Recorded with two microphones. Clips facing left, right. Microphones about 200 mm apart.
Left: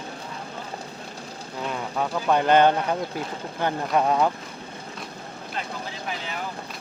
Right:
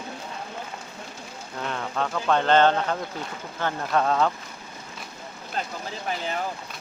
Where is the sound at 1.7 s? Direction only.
10° left (ahead or behind).